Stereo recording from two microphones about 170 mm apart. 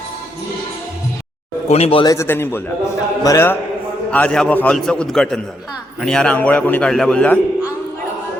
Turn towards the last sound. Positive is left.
turn(degrees=5)  # may be behind; listen again after turning